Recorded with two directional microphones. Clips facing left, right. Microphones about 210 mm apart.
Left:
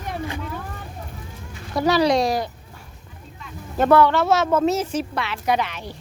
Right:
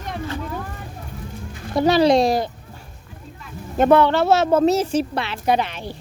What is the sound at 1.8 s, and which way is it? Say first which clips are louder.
Speech: right 3 dB; 25° right (ahead or behind).